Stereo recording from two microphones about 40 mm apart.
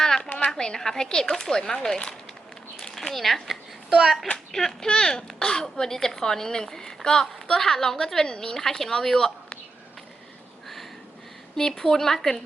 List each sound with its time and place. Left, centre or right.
0.0 s a sound: centre
0.5 s a woman's voice: centre
3.1 s speech: centre
4.5 s a woman's voice: centre
11.5 s a woman's voice: centre